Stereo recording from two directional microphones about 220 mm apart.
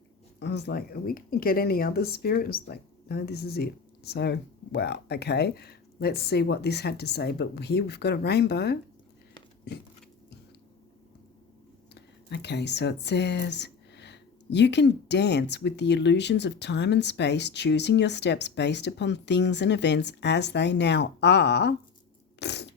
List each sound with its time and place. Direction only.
0.3 s speech: 50° left (ahead or behind)
11.9 s speech: 50° left (ahead or behind)
22.4 s a sound: 50° left (ahead or behind)